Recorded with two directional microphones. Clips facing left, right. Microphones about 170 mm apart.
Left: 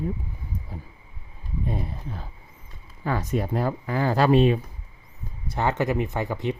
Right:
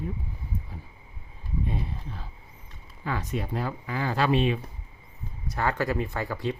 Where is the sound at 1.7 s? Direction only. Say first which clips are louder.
Left 3 dB; 45° left (ahead or behind).